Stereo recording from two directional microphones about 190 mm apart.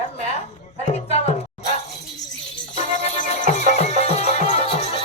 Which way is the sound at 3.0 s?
40° left (ahead or behind).